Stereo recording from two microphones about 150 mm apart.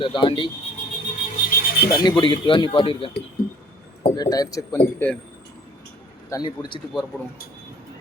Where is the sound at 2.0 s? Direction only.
30° left (ahead or behind).